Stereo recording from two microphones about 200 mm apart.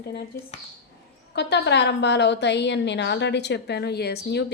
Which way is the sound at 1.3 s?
60° left (ahead or behind).